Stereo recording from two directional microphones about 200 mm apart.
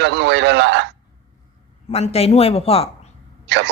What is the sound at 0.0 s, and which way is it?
Speech, 60° right (ahead or behind).